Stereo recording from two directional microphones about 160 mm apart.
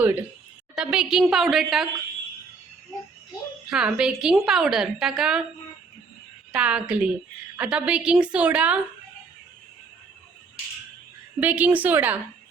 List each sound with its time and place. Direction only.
0.0 s a woman's voice: 10° right (ahead or behind)
3.7 s a woman's voice: 5° right (ahead or behind)
6.5 s a woman's voice: 5° right (ahead or behind)
11.3 s a woman's voice: 10° right (ahead or behind)